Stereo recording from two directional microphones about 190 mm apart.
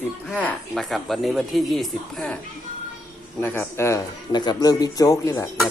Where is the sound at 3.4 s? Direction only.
10° left (ahead or behind).